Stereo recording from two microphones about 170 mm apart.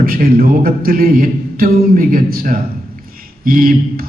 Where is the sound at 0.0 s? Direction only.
60° right (ahead or behind).